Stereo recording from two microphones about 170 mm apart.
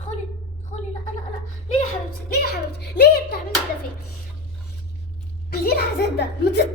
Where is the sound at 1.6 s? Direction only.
55° left (ahead or behind); by 3.3 s 75° left (ahead or behind).